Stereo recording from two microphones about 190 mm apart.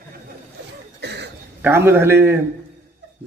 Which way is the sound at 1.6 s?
10° right (ahead or behind).